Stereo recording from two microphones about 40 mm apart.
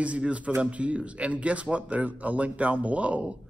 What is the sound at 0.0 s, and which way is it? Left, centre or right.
Speech, right.